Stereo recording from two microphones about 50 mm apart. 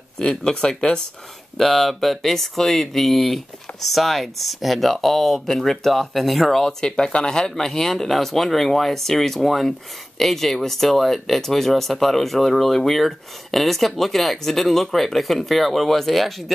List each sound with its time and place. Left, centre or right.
0.2 s speech: centre
1.6 s speech: centre